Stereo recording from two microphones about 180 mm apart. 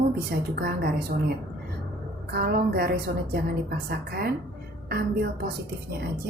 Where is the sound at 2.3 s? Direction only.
60° right (ahead or behind).